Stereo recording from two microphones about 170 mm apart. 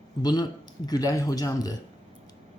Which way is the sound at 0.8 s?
20° left (ahead or behind).